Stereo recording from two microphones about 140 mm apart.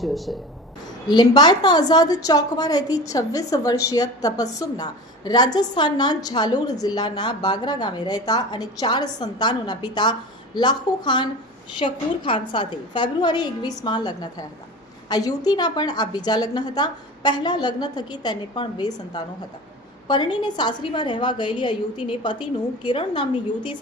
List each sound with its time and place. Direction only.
0.0 s speech: centre (ahead or behind)
1.0 s a woman's voice: 30° left (ahead or behind)